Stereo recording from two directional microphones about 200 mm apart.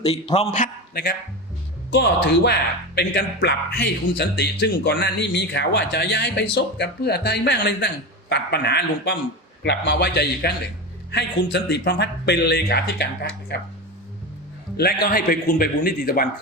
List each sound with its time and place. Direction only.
0.0 s a man's voice: 30° left (ahead or behind)
0.5 s a man's voice: 45° left (ahead or behind)
1.9 s speech: 55° left (ahead or behind)
14.8 s a man's voice: 50° left (ahead or behind)